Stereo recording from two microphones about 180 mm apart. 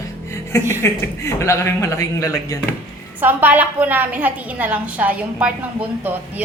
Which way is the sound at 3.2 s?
10° right (ahead or behind).